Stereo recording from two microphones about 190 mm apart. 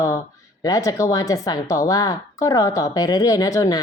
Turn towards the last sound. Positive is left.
turn(degrees=15)  # may be behind; listen again after turning